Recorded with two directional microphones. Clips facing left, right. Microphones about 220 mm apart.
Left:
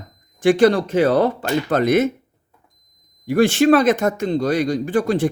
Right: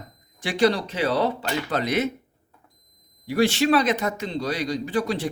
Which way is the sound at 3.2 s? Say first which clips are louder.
Left 6 dB; 50° left (ahead or behind).